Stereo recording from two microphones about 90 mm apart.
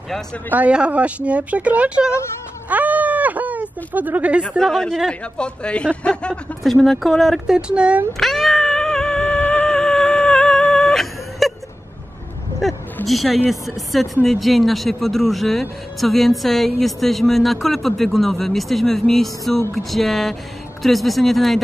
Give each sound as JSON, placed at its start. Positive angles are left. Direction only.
{"t": 0.5, "sound": "speech", "side_deg": -15}
{"t": 2.7, "sound": "a sound", "side_deg": -15}
{"t": 4.6, "sound": "speech", "side_deg": 5}
{"t": 8.2, "sound": "cat", "side_deg": 0}
{"t": 13.0, "sound": "speech", "side_deg": 0}